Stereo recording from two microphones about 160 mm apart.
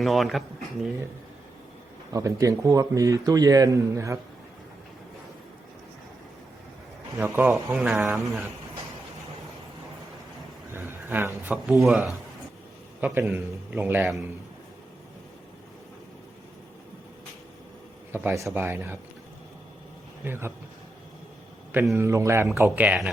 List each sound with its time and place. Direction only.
0.0 s speech: centre (ahead or behind)
2.1 s a man's voice: 20° right (ahead or behind)
7.2 s a man's voice: 10° right (ahead or behind)
10.7 s a man's voice: 15° right (ahead or behind)
18.1 s a man's voice: 15° right (ahead or behind)
20.2 s a man's voice: 15° right (ahead or behind)
21.9 s a man's voice: 15° right (ahead or behind)